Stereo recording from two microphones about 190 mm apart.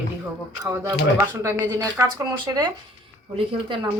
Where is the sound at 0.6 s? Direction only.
15° right (ahead or behind).